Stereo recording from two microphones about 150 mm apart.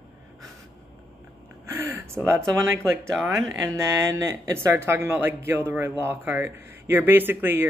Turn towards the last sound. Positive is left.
turn(degrees=-15)  # may be behind; listen again after turning